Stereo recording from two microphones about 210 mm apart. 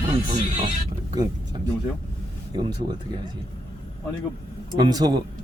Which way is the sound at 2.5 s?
20° right (ahead or behind).